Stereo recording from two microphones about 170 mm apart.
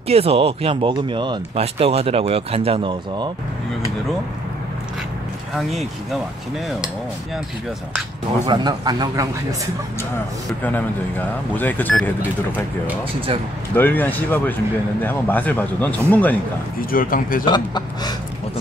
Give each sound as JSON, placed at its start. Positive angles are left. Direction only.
{"t": 0.1, "sound": "speech", "side_deg": -35}
{"t": 5.6, "sound": "speech", "side_deg": 0}
{"t": 8.5, "sound": "speech", "side_deg": -25}
{"t": 10.6, "sound": "speech", "side_deg": 10}
{"t": 13.7, "sound": "speech", "side_deg": 10}
{"t": 16.9, "sound": "speech", "side_deg": 55}
{"t": 17.5, "sound": "speech", "side_deg": 25}